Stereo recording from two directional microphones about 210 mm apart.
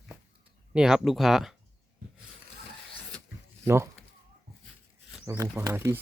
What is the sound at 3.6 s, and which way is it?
Speech, 15° right (ahead or behind).